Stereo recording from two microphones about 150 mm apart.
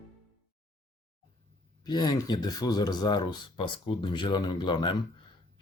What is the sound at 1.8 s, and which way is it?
Speech, 25° left (ahead or behind).